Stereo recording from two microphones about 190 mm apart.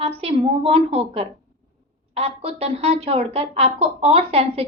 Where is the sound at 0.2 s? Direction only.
30° right (ahead or behind).